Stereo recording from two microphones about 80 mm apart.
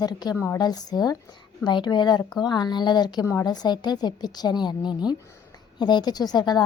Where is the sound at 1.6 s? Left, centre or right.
Left.